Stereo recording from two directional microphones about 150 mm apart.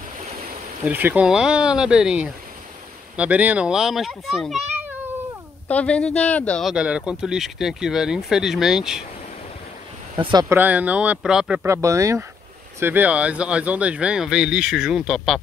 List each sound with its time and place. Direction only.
0.8 s speech: 10° right (ahead or behind)
5.7 s speech: 10° left (ahead or behind)
6.7 s speech: 5° right (ahead or behind)
10.5 s speech: 10° right (ahead or behind)
11.6 s speech: 20° right (ahead or behind); by 15.4 s centre (ahead or behind)